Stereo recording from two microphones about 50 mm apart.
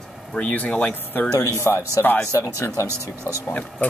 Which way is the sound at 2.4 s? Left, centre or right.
Left.